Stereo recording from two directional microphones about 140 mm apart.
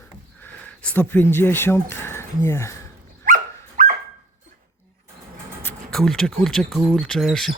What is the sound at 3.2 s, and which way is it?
Dog, 75° right (ahead or behind).